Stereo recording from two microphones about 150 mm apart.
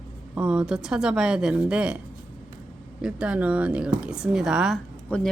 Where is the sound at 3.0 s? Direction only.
5° right (ahead or behind).